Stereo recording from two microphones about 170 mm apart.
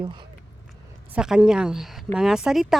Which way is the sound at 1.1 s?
5° right (ahead or behind).